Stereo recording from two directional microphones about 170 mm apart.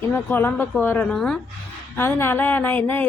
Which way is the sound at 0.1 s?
10° left (ahead or behind).